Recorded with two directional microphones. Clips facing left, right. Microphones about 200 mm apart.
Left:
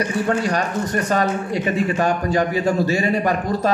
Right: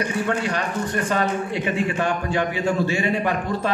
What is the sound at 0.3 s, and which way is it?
A man's voice, 40° left (ahead or behind).